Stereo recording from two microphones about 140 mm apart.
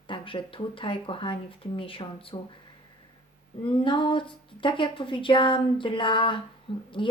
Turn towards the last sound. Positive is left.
turn(degrees=35)  # may be behind; listen again after turning